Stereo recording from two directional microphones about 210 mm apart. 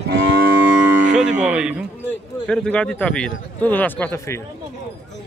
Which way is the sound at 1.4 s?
5° right (ahead or behind).